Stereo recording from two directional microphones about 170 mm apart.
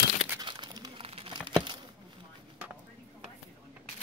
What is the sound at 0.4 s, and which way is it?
Crumpling, 25° right (ahead or behind).